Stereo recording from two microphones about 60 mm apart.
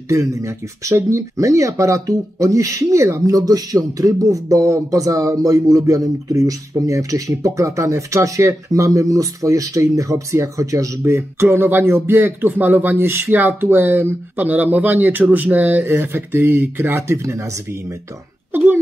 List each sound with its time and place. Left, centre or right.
0.1 s speech: right
3.3 s speech: right
11.1 s speech: right
15.8 s speech: right
18.5 s a sound: right